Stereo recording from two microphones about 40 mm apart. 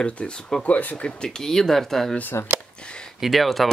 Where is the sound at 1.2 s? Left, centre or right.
Centre.